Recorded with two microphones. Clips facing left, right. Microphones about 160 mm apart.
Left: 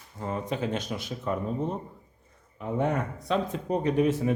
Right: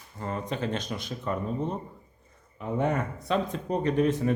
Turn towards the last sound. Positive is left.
turn(degrees=10)  # may be behind; listen again after turning